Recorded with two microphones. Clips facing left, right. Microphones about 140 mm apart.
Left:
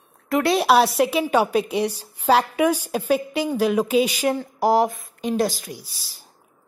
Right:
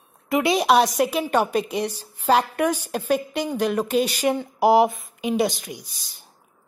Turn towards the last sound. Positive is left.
turn(degrees=0)  # may be behind; listen again after turning